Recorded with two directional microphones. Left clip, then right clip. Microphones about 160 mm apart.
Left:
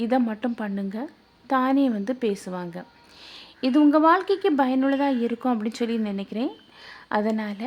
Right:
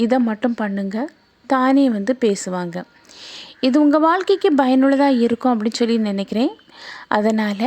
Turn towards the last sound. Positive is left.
turn(degrees=-40)  # may be behind; listen again after turning